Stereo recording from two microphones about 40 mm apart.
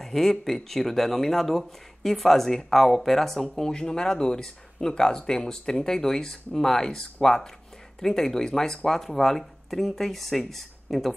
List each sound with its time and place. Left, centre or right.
0.0 s speech: centre